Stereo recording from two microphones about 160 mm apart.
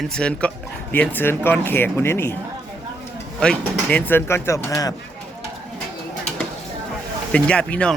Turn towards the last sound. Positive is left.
turn(degrees=5)  # may be behind; listen again after turning